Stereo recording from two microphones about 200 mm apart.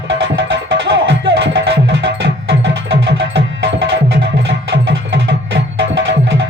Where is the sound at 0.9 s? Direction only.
65° right (ahead or behind).